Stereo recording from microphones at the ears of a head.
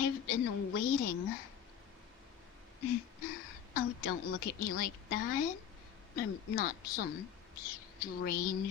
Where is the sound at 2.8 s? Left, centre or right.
Left.